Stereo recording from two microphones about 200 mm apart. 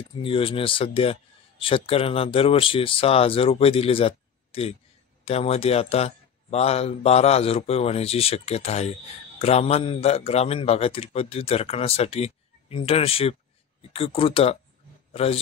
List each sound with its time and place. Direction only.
0.2 s a man's voice: 25° left (ahead or behind)